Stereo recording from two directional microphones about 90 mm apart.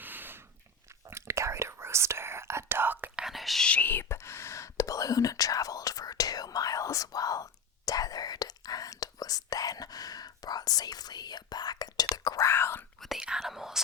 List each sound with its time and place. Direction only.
0.0 s a sound: 20° right (ahead or behind)
0.9 s whispering: 30° right (ahead or behind)
3.2 s whispering: centre (ahead or behind)
3.7 s whispering: 20° left (ahead or behind); by 12.5 s 45° left (ahead or behind)
12.5 s whispering: 25° left (ahead or behind)
13.0 s whispering: centre (ahead or behind)